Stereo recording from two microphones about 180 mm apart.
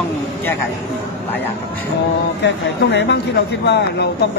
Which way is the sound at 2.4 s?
70° left (ahead or behind).